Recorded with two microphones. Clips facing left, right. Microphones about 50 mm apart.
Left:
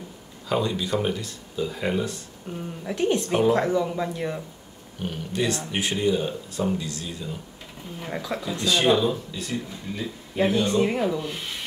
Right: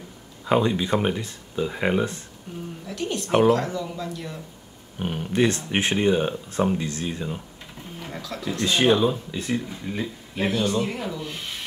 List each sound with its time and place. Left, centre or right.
0.5 s speech: right
2.5 s speech: left
4.9 s speech: right
8.1 s speech: centre
8.6 s speech: right
10.3 s speech: left